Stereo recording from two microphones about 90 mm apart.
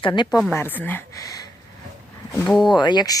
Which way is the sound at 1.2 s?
40° left (ahead or behind).